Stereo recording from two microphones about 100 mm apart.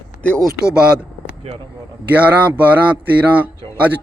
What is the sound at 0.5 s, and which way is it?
Speech, 10° right (ahead or behind).